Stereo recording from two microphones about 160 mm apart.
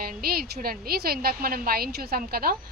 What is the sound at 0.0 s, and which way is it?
A woman's voice, 70° right (ahead or behind).